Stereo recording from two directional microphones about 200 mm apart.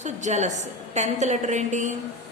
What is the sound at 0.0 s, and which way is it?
A woman's voice, 35° right (ahead or behind).